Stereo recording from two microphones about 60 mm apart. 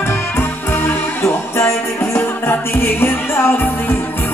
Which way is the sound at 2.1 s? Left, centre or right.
Left.